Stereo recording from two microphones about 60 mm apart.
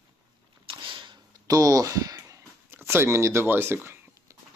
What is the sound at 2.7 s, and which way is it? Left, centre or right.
Speech, right.